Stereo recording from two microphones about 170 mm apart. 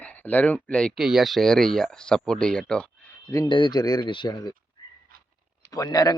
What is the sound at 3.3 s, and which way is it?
A man's voice, 25° left (ahead or behind).